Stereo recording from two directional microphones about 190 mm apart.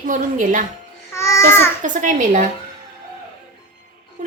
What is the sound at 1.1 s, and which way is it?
Speech, 15° left (ahead or behind).